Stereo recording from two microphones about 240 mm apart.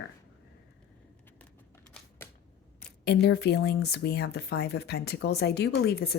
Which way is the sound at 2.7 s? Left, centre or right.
Left.